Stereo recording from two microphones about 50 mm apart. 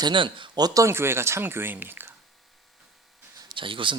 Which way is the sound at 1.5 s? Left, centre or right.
Right.